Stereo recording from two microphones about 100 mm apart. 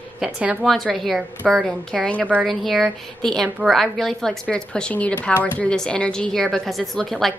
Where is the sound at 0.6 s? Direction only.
Centre (ahead or behind).